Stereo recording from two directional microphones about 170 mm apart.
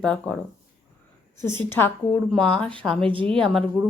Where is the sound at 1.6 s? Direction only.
10° left (ahead or behind).